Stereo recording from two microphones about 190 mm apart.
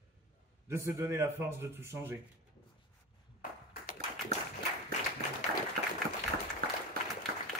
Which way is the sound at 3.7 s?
45° left (ahead or behind).